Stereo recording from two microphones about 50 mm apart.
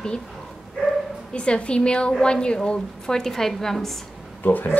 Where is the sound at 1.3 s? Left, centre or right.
Left.